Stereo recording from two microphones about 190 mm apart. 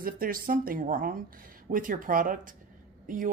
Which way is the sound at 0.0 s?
50° right (ahead or behind).